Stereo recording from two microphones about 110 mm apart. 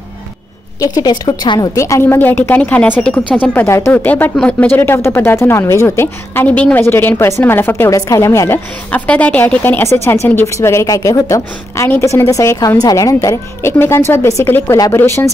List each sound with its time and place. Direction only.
0.7 s a woman's voice: 35° left (ahead or behind)
1.8 s a woman's voice: 25° left (ahead or behind)